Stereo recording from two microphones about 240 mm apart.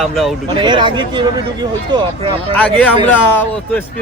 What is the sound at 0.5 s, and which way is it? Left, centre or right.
Speech, centre.